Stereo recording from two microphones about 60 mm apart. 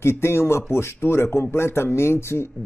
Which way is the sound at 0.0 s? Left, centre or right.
Left.